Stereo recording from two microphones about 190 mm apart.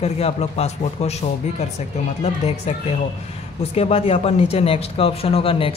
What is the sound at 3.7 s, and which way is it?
Speech, 30° left (ahead or behind).